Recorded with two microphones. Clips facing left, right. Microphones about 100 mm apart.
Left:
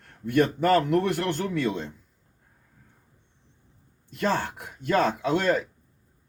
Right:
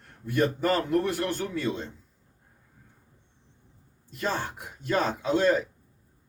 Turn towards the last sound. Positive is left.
turn(degrees=60)  # may be behind; listen again after turning